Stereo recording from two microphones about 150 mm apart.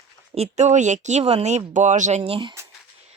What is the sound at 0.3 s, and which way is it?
Speech, 45° right (ahead or behind).